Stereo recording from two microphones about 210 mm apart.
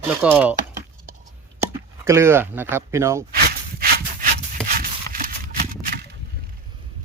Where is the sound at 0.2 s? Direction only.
10° right (ahead or behind).